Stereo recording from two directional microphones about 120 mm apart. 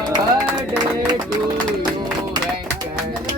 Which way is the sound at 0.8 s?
35° right (ahead or behind).